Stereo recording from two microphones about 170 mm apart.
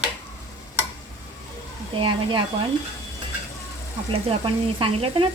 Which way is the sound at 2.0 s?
30° right (ahead or behind).